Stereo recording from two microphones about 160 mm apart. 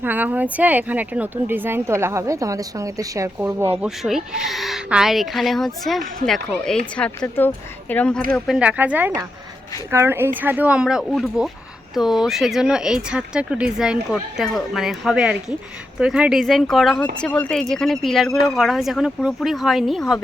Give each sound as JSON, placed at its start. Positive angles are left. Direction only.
{"t": 0.0, "sound": "speech", "side_deg": -10}
{"t": 3.8, "sound": "speech", "side_deg": -5}
{"t": 8.3, "sound": "speech", "side_deg": 0}